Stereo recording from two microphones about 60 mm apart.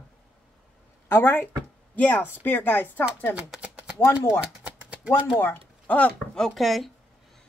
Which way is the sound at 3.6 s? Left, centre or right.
Right.